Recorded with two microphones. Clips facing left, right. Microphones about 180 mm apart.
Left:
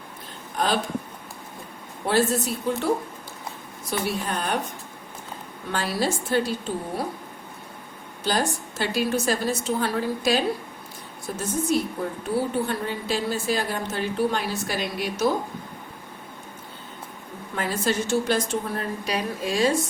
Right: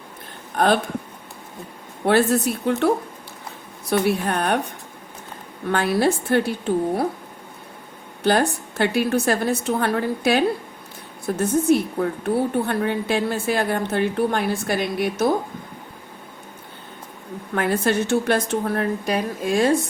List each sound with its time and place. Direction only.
0.5 s speech: 60° right (ahead or behind)
2.0 s a woman's voice: 65° right (ahead or behind)
5.7 s a woman's voice: 60° right (ahead or behind)
8.2 s a woman's voice: 60° right (ahead or behind)
17.5 s a woman's voice: 60° right (ahead or behind)